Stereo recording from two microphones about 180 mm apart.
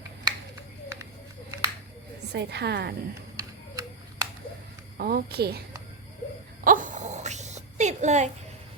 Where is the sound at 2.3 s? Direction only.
70° right (ahead or behind).